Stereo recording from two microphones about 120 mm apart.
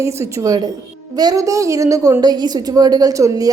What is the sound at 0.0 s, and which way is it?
A woman's voice, 25° right (ahead or behind).